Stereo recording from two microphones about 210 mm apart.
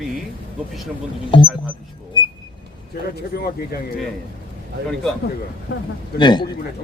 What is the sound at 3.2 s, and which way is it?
Speech, 50° left (ahead or behind).